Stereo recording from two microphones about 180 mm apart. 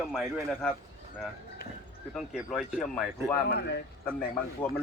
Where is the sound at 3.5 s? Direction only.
65° left (ahead or behind).